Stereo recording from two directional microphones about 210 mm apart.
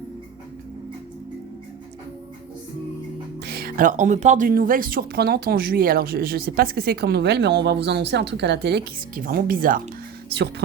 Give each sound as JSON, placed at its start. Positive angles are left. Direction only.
{"t": 3.4, "sound": "speech", "side_deg": -45}